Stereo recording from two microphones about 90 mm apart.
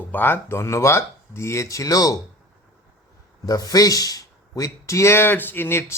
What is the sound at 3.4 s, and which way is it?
A man's voice, 40° left (ahead or behind).